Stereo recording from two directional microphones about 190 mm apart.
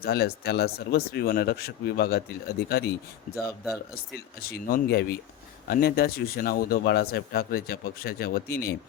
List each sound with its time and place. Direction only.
0.0 s speech: 55° left (ahead or behind)
4.4 s speech: 55° left (ahead or behind)